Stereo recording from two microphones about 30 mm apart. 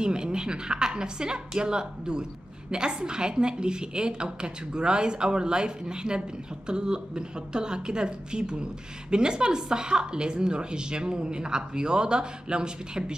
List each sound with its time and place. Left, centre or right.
0.0 s a woman's voice: right